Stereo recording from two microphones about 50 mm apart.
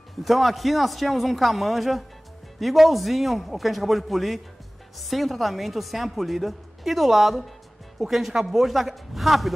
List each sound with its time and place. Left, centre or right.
0.2 s a woman's voice: centre